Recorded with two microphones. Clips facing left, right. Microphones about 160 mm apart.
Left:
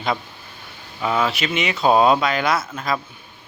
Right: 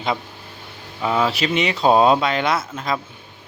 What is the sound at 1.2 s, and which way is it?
Speech, 30° right (ahead or behind).